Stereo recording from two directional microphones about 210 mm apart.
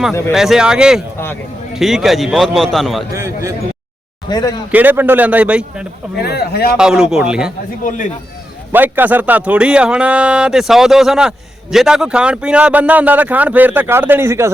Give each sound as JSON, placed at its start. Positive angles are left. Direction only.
{"t": 0.3, "sound": "a man's voice", "side_deg": -5}
{"t": 3.1, "sound": "a man's voice", "side_deg": -15}
{"t": 4.3, "sound": "speech", "side_deg": 20}
{"t": 4.7, "sound": "a man's voice", "side_deg": -10}
{"t": 6.1, "sound": "speech", "side_deg": 50}
{"t": 6.7, "sound": "a man's voice", "side_deg": -5}
{"t": 7.9, "sound": "speech", "side_deg": 35}
{"t": 8.7, "sound": "a man's voice", "side_deg": -10}